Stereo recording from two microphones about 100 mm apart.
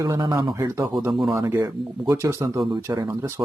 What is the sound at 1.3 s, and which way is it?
Speech, 30° right (ahead or behind).